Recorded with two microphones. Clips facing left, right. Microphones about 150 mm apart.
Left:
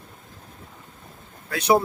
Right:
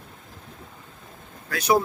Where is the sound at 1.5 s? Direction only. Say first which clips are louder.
Left 2 dB; 30° left (ahead or behind).